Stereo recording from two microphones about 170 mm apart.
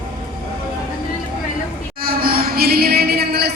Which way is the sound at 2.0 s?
60° right (ahead or behind).